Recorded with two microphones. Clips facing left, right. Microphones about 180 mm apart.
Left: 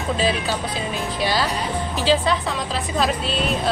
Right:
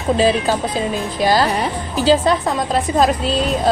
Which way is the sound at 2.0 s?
45° right (ahead or behind).